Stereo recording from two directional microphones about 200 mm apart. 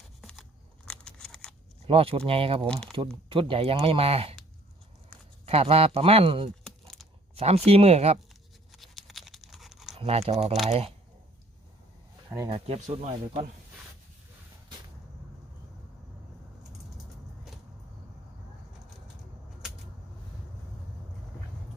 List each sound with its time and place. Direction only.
0.2 s crunch: centre (ahead or behind)
0.9 s a sound: 5° left (ahead or behind)
1.9 s speech: 30° right (ahead or behind)
5.5 s speech: 30° right (ahead or behind)
6.7 s typing: centre (ahead or behind)
7.3 s speech: 30° right (ahead or behind)
8.7 s a sound: centre (ahead or behind)
10.0 s speech: 30° right (ahead or behind)
12.5 s speech: 30° right (ahead or behind)